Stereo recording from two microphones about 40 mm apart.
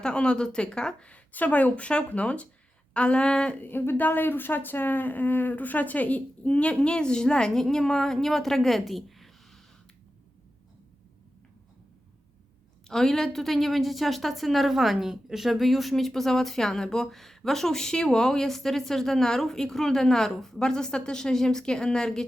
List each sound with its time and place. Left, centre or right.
0.0 s speech: left
1.3 s speech: left
1.8 s speech: left
3.6 s a woman's voice: left; by 8.8 s centre
8.9 s a sound: centre
12.9 s a woman's voice: centre